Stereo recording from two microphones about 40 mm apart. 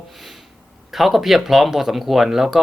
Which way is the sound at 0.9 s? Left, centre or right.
Centre.